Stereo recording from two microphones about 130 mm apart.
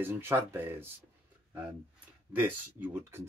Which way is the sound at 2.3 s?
15° right (ahead or behind).